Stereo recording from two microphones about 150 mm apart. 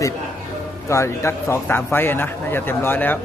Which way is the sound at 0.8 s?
20° left (ahead or behind).